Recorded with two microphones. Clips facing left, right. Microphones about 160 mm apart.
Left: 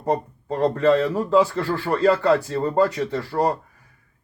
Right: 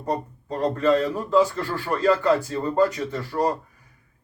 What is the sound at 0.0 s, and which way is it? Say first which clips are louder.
Speech: left 4 dB; 30° left (ahead or behind).